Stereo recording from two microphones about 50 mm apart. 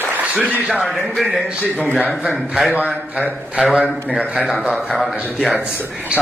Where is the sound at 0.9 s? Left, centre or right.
Centre.